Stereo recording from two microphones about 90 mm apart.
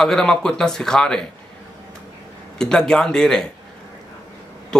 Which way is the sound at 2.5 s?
5° left (ahead or behind).